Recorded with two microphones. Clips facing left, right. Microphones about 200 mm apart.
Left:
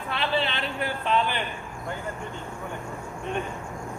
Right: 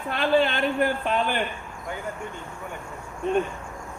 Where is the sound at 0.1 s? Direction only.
45° right (ahead or behind).